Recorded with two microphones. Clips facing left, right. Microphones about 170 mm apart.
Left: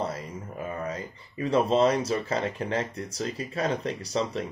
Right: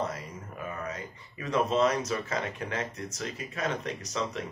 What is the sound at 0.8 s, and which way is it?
Speech, 30° left (ahead or behind).